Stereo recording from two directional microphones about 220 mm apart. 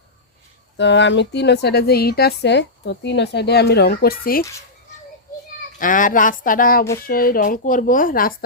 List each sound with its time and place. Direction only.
0.8 s speech: 55° left (ahead or behind)
5.8 s speech: 35° left (ahead or behind)